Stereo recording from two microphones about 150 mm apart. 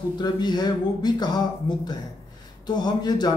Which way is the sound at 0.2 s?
30° left (ahead or behind).